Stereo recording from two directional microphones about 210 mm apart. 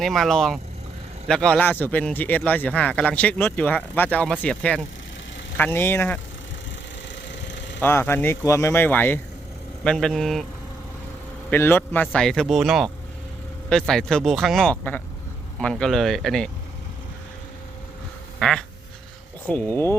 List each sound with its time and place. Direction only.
0.0 s speech: centre (ahead or behind)
7.3 s vehicle: 60° left (ahead or behind)
7.8 s speech: 10° left (ahead or behind)
11.5 s speech: 10° left (ahead or behind)
18.3 s duck: 5° left (ahead or behind)
19.5 s speech: 5° left (ahead or behind)